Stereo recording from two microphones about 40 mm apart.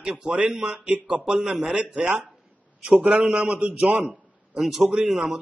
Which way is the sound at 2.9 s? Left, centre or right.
Right.